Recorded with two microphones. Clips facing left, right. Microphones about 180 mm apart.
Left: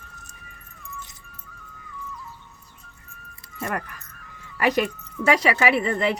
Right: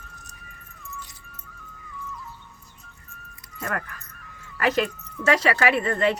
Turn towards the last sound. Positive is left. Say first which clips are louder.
# even
turn(degrees=10)  # may be behind; listen again after turning